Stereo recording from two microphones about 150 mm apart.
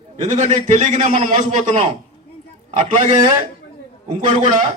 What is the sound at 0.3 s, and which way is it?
A man's voice, 50° right (ahead or behind).